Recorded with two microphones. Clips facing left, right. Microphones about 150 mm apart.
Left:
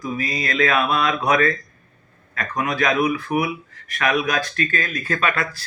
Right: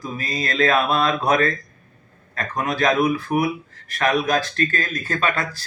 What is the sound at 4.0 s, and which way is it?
Speech, 25° right (ahead or behind).